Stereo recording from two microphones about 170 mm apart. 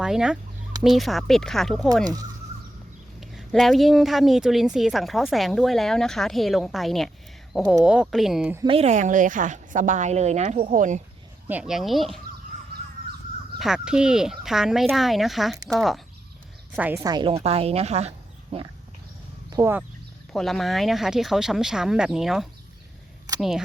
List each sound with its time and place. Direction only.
0.0 s a woman's voice: 5° right (ahead or behind)
3.2 s a woman's voice: centre (ahead or behind)
8.6 s a woman's voice: 35° right (ahead or behind)
11.4 s a woman's voice: 5° right (ahead or behind)
13.6 s a woman's voice: 5° right (ahead or behind)
17.0 s speech: 25° right (ahead or behind)
19.6 s speech: 20° right (ahead or behind)
20.3 s a woman's voice: centre (ahead or behind)